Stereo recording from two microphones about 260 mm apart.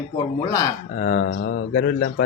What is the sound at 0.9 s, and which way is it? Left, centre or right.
Speech, left.